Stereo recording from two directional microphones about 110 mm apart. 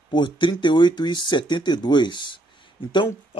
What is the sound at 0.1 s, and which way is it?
Speech, 45° left (ahead or behind).